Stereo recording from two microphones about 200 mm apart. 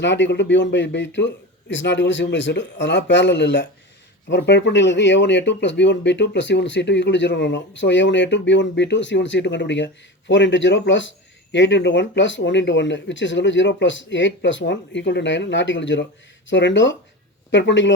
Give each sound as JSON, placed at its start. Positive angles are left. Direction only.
{"t": 0.0, "sound": "speech", "side_deg": 60}